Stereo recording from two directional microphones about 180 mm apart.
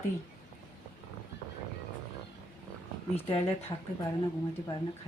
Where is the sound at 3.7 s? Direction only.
25° left (ahead or behind).